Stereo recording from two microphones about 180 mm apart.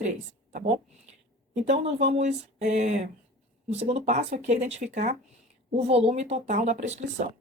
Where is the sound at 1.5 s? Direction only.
35° right (ahead or behind).